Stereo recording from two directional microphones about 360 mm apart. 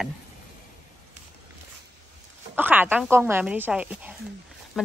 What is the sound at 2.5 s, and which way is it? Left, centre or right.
A woman's voice, centre.